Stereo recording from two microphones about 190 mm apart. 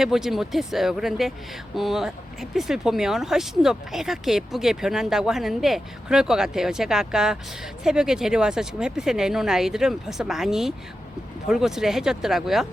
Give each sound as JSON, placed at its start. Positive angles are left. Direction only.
{"t": 0.0, "sound": "speech", "side_deg": 0}